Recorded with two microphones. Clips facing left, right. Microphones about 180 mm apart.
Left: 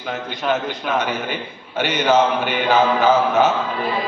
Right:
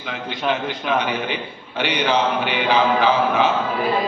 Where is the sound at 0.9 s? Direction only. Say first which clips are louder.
Left 1 dB; 45° left (ahead or behind).